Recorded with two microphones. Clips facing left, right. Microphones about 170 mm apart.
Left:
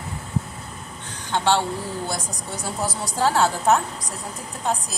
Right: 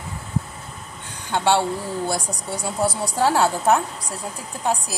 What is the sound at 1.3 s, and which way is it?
Speech, 15° right (ahead or behind).